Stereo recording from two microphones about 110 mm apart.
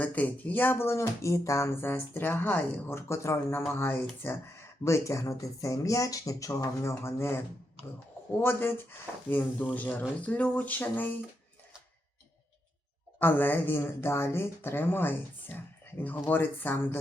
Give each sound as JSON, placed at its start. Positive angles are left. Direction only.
{"t": 0.0, "sound": "speech", "side_deg": 15}
{"t": 13.1, "sound": "speech", "side_deg": 20}